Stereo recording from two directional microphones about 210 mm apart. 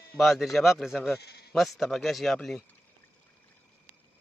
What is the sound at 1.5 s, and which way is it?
Speech, centre (ahead or behind).